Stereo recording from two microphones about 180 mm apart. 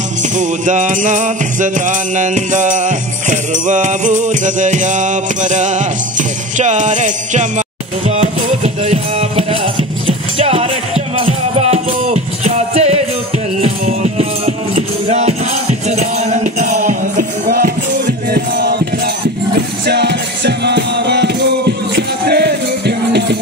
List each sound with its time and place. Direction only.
0.4 s music: 45° right (ahead or behind); by 18.8 s 65° right (ahead or behind)
19.9 s music: 70° right (ahead or behind)